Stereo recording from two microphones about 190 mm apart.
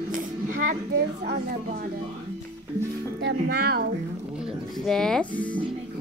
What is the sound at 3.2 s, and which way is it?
Speech, 60° right (ahead or behind).